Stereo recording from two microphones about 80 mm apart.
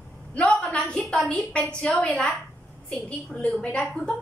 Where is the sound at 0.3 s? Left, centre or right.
Centre.